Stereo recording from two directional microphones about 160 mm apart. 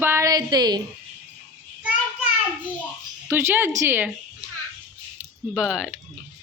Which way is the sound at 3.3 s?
15° right (ahead or behind).